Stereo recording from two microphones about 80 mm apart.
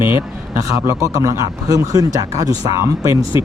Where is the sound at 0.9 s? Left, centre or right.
Right.